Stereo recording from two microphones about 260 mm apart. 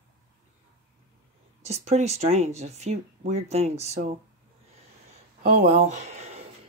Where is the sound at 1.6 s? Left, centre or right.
Right.